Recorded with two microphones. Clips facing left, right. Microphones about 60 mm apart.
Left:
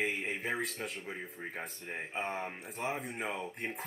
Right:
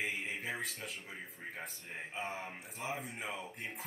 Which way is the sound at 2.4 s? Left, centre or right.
Left.